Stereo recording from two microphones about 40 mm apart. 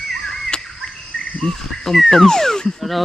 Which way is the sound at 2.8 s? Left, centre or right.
Centre.